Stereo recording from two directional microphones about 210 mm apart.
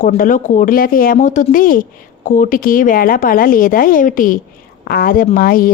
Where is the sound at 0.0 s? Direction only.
40° left (ahead or behind).